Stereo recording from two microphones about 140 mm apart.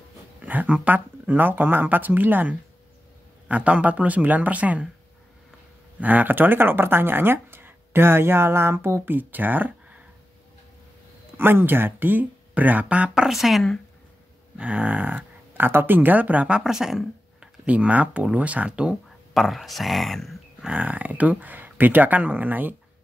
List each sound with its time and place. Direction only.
0.4 s speech: 10° right (ahead or behind)
5.9 s speech: 10° right (ahead or behind)
11.3 s speech: 15° right (ahead or behind)